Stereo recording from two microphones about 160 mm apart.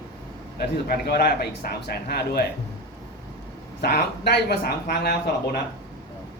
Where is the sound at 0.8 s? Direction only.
80° left.